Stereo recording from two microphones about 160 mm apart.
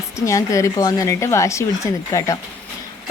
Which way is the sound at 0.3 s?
20° left (ahead or behind).